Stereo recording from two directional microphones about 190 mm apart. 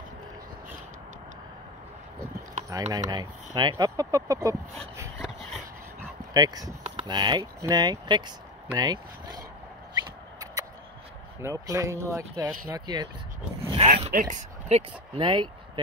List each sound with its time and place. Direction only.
2.7 s speech: 20° right (ahead or behind)
5.2 s dog: centre (ahead or behind)
5.9 s speech: 20° right (ahead or behind)
11.4 s speech: 20° right (ahead or behind)
13.7 s speech: 35° right (ahead or behind)